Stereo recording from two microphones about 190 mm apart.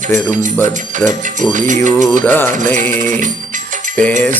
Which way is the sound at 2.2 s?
10° left (ahead or behind).